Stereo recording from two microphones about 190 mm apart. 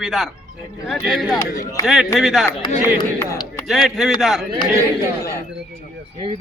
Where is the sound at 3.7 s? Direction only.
Centre (ahead or behind).